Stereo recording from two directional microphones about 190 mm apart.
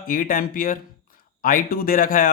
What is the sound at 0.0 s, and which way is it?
Speech, 50° left (ahead or behind).